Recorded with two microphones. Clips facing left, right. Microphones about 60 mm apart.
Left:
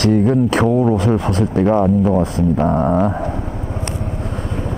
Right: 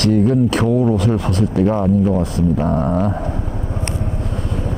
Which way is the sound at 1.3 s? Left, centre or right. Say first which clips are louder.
Left 1 dB; left.